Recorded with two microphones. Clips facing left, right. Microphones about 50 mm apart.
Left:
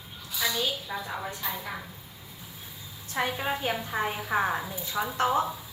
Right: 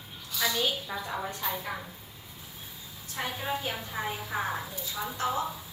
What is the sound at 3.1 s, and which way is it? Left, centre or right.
A woman's voice, left.